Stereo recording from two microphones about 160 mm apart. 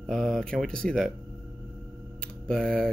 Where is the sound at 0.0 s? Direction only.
5° left (ahead or behind).